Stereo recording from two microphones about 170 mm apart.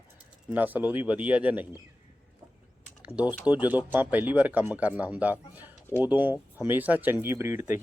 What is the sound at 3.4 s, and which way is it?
Speech, 10° right (ahead or behind).